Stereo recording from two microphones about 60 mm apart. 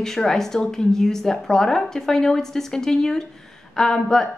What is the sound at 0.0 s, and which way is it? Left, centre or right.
A woman's voice, centre.